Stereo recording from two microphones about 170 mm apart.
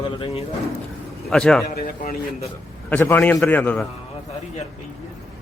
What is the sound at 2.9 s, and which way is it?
Speech, 10° left (ahead or behind).